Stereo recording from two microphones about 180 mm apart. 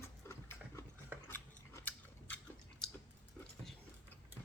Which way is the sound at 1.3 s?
10° left (ahead or behind).